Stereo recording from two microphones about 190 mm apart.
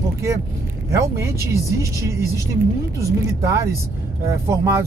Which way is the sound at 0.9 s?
15° right (ahead or behind).